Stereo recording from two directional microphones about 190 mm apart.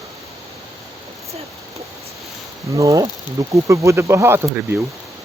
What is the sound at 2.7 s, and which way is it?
Speech, 15° right (ahead or behind).